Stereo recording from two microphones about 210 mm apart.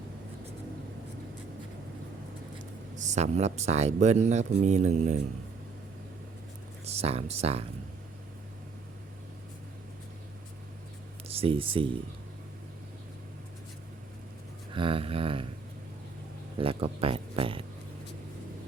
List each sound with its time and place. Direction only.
2.9 s speech: 35° right (ahead or behind)
6.8 s speech: 30° right (ahead or behind)
11.3 s speech: 25° right (ahead or behind)
14.7 s speech: 25° right (ahead or behind)
16.6 s speech: 25° right (ahead or behind)